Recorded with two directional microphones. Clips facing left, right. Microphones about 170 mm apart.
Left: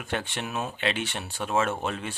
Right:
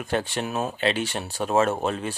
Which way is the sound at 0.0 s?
40° right (ahead or behind).